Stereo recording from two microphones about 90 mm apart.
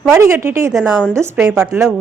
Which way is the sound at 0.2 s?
30° right (ahead or behind).